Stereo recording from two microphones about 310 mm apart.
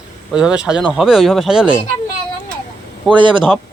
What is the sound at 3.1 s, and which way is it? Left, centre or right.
Speech, centre.